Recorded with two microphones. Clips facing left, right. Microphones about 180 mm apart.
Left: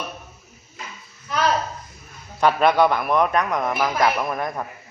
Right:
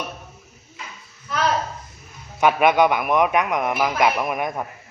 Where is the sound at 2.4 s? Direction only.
15° right (ahead or behind).